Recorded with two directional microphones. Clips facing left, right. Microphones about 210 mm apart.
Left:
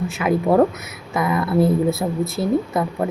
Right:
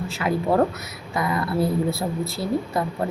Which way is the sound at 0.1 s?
20° left (ahead or behind).